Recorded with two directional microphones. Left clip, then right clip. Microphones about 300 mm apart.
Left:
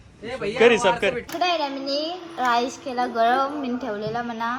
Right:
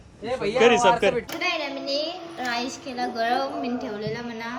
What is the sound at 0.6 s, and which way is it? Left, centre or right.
Speech, centre.